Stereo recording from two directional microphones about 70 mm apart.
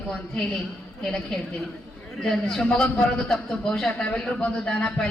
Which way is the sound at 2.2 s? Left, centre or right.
Centre.